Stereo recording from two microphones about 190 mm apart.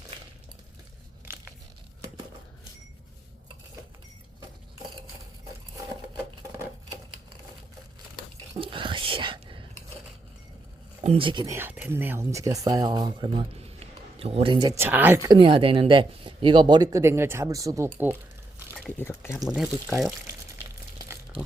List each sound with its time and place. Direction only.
8.5 s whispering: 25° right (ahead or behind)
11.0 s speech: 30° right (ahead or behind)
11.5 s speech: 10° right (ahead or behind); by 14.7 s 25° right (ahead or behind)
14.8 s speech: 10° right (ahead or behind)
18.9 s speech: 10° left (ahead or behind)
19.5 s speech: centre (ahead or behind)